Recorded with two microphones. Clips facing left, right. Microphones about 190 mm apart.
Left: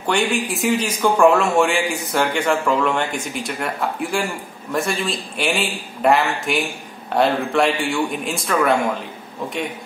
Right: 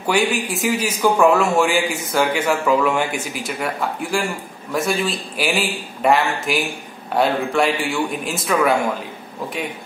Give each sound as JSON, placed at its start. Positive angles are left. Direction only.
{"t": 0.0, "sound": "speech", "side_deg": -5}